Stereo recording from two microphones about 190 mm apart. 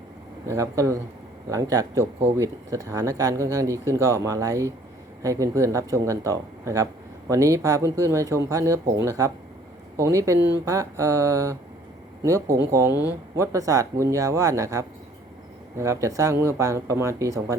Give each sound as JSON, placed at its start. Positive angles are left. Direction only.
{"t": 0.4, "sound": "speech", "side_deg": -15}